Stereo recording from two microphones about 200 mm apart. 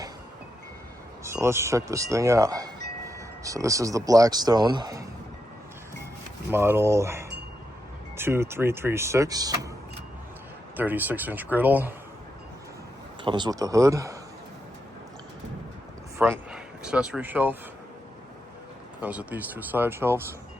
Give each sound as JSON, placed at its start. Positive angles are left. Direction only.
{"t": 1.2, "sound": "speech", "side_deg": -15}
{"t": 6.5, "sound": "speech", "side_deg": -10}
{"t": 10.8, "sound": "speech", "side_deg": -10}
{"t": 13.2, "sound": "speech", "side_deg": -20}
{"t": 16.1, "sound": "speech", "side_deg": -10}
{"t": 19.0, "sound": "speech", "side_deg": -10}